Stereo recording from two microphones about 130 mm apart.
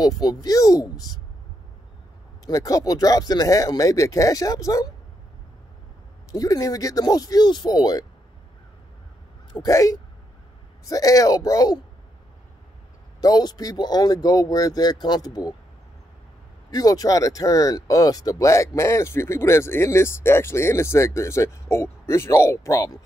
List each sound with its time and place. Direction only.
0.0 s speech: 30° left (ahead or behind)
2.4 s speech: 25° left (ahead or behind)
6.3 s speech: 30° left (ahead or behind)
9.5 s speech: 25° left (ahead or behind)
13.2 s speech: 30° left (ahead or behind)
16.7 s speech: 30° left (ahead or behind)